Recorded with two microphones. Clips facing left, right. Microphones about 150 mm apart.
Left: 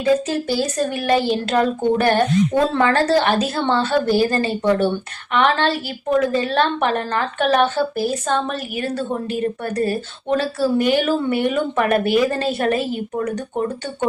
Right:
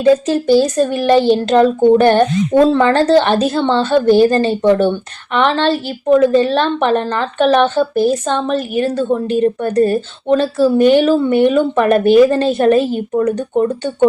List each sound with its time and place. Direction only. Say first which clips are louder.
0.0 s a woman's voice: right 6 dB; 30° right (ahead or behind)